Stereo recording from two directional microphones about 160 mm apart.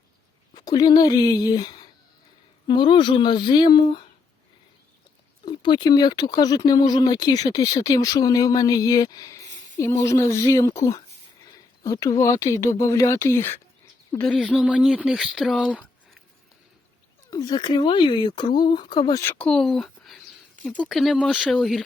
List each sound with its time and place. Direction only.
0.5 s speech: 25° left (ahead or behind)
5.5 s speech: 30° left (ahead or behind)
14.3 s speech: centre (ahead or behind)
17.3 s speech: 25° left (ahead or behind)
19.2 s speech: 10° left (ahead or behind)